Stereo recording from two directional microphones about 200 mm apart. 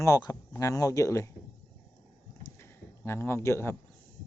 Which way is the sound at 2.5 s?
10° left (ahead or behind).